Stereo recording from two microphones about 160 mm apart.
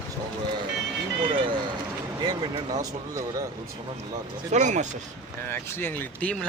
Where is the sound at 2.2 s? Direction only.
25° right (ahead or behind).